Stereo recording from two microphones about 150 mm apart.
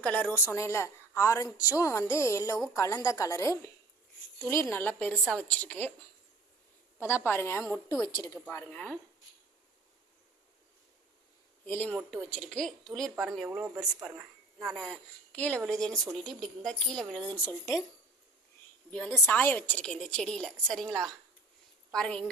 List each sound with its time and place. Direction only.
0.0 s a woman's voice: 10° left (ahead or behind)
7.0 s a woman's voice: 15° left (ahead or behind)
11.9 s a woman's voice: centre (ahead or behind)
13.5 s speech: 20° right (ahead or behind)
14.0 s a woman's voice: 5° right (ahead or behind); by 17.5 s 10° left (ahead or behind)
18.9 s a woman's voice: 10° left (ahead or behind)